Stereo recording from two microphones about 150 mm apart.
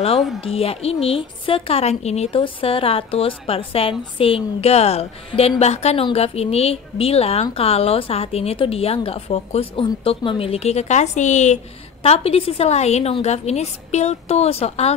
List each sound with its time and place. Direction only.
0.4 s a woman's voice: 40° left (ahead or behind)